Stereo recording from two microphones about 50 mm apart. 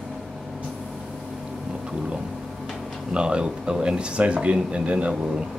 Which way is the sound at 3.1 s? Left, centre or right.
Centre.